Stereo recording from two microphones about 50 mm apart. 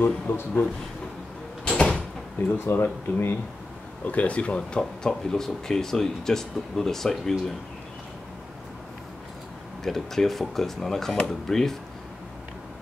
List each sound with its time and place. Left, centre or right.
0.0 s speech: left
1.8 s door: centre
2.6 s speech: left
4.0 s speech: left; by 7.3 s centre
9.8 s speech: centre